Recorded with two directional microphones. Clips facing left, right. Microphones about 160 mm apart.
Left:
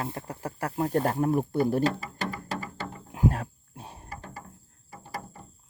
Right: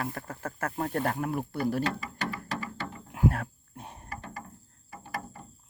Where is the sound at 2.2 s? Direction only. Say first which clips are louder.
Left 1 dB; 40° left (ahead or behind).